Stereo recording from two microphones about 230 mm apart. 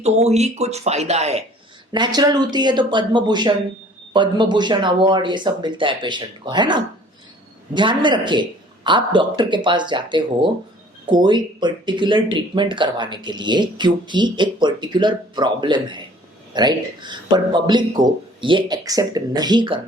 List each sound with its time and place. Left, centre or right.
0.0 s speech: right
1.9 s speech: centre